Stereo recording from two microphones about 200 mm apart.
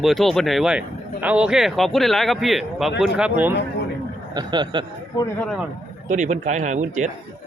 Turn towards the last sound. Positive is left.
turn(degrees=-35)  # may be behind; listen again after turning